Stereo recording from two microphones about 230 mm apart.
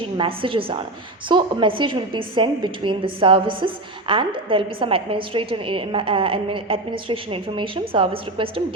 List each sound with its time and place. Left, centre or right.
0.2 s a woman's voice: right